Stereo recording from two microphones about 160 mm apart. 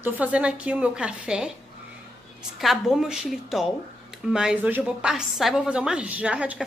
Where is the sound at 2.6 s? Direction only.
Centre (ahead or behind).